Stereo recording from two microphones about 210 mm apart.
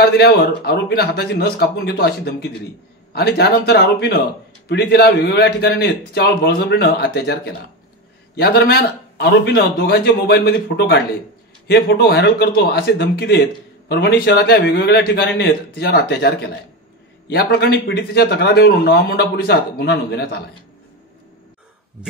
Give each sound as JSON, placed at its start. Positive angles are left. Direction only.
{"t": 0.0, "sound": "a man's voice", "side_deg": 50}